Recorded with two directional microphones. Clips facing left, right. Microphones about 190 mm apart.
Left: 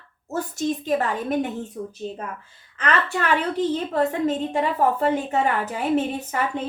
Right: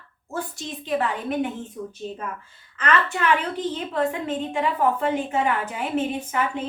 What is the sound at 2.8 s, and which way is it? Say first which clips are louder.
A woman's voice: right 1 dB; 35° left (ahead or behind).